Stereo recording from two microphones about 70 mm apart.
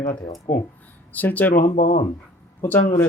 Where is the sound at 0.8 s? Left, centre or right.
Left.